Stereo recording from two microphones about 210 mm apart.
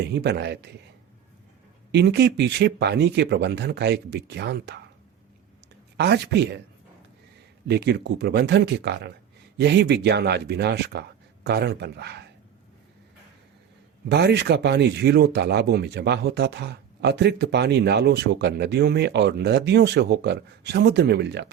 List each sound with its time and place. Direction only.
0.0 s speech: 55° right (ahead or behind)
1.9 s speech: 55° right (ahead or behind)
6.0 s speech: 55° right (ahead or behind)
7.7 s speech: 55° right (ahead or behind)
14.1 s speech: 55° right (ahead or behind)